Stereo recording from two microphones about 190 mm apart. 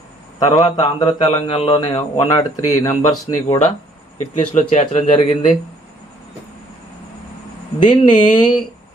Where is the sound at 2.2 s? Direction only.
15° left (ahead or behind).